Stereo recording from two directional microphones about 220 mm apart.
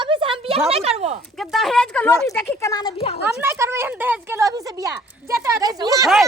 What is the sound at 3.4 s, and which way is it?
Speech, 10° right (ahead or behind).